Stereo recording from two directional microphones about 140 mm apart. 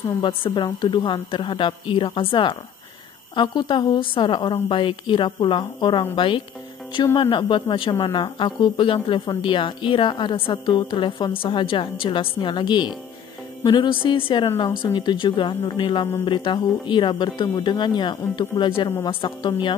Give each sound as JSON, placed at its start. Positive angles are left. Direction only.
{"t": 0.2, "sound": "speech", "side_deg": 35}